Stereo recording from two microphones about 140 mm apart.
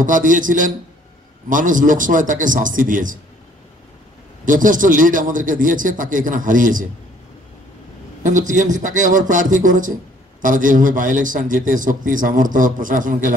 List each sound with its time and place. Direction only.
0.0 s a man's voice: 70° right (ahead or behind)
4.5 s a man's voice: 70° right (ahead or behind)
8.2 s a man's voice: 65° right (ahead or behind)